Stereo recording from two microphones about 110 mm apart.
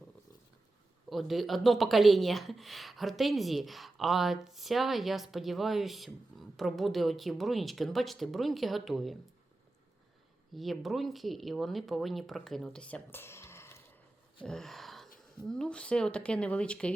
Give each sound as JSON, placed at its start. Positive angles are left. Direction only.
{"t": 1.1, "sound": "speech", "side_deg": 0}
{"t": 10.5, "sound": "speech", "side_deg": 0}
{"t": 13.1, "sound": "a sound", "side_deg": 20}
{"t": 14.4, "sound": "gasp", "side_deg": 5}
{"t": 15.4, "sound": "speech", "side_deg": 5}